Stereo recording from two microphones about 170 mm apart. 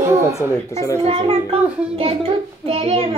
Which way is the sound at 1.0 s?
35° right (ahead or behind).